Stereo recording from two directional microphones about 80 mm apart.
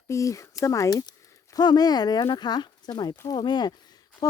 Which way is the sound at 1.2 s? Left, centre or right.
Left.